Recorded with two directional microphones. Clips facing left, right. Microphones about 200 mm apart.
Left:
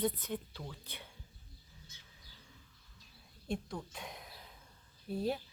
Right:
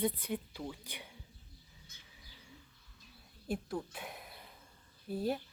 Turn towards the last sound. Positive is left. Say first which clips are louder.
# right 1 dB
turn(degrees=0)  # may be behind; listen again after turning